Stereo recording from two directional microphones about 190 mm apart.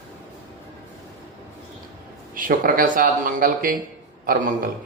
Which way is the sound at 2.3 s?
45° right (ahead or behind).